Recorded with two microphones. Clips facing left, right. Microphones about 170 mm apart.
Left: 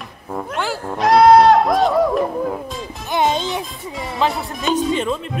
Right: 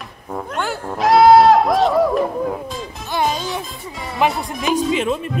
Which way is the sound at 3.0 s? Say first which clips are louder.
Left 2 dB; 20° left (ahead or behind).